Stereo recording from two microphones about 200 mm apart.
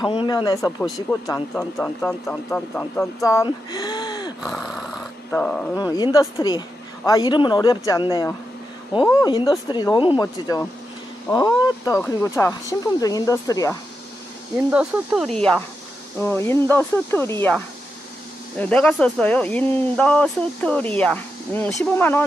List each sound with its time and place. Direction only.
0.1 s speech: 25° left (ahead or behind)
1.5 s speech: 5° left (ahead or behind); by 4.3 s 20° left (ahead or behind)
4.4 s dog: centre (ahead or behind)
5.8 s speech: 20° left (ahead or behind)
14.7 s speech: 5° right (ahead or behind)
18.6 s speech: 5° left (ahead or behind)